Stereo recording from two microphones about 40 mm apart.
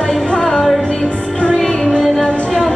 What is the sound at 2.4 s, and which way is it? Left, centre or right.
Singing, centre.